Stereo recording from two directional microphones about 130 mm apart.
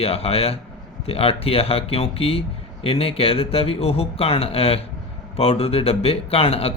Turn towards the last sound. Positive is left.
turn(degrees=50)  # may be behind; listen again after turning